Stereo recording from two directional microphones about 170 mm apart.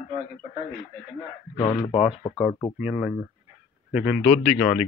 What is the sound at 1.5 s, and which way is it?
Radio, 60° right (ahead or behind).